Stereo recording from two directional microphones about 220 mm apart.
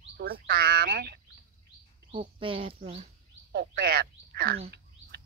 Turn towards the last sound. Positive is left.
turn(degrees=-45)  # may be behind; listen again after turning